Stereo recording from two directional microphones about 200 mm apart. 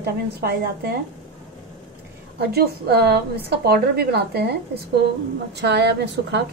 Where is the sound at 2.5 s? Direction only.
55° right (ahead or behind).